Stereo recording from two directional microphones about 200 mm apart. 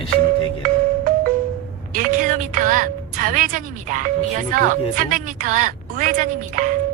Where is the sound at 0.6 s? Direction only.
45° right (ahead or behind).